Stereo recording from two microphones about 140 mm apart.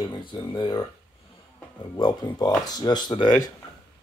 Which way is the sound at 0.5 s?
35° left (ahead or behind).